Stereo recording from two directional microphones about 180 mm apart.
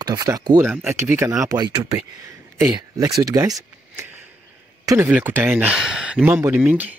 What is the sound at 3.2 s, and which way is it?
Speech, 20° right (ahead or behind).